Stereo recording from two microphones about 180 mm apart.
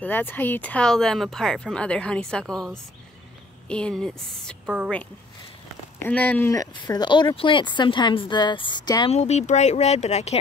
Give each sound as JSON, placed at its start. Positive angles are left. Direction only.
{"t": 0.0, "sound": "speech", "side_deg": 10}
{"t": 6.0, "sound": "speech", "side_deg": 10}
{"t": 9.1, "sound": "speech", "side_deg": 40}